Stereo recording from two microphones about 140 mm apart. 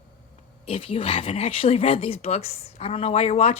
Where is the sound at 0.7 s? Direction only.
40° left (ahead or behind).